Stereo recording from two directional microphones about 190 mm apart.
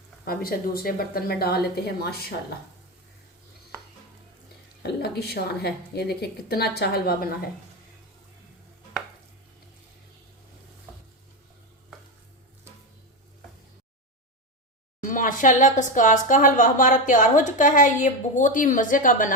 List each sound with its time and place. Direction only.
0.3 s speech: 50° left (ahead or behind)
4.8 s a woman's voice: 55° left (ahead or behind)
15.0 s speech: 45° left (ahead or behind)